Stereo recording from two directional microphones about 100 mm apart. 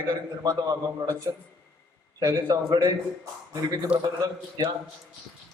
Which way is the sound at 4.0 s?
50° right (ahead or behind).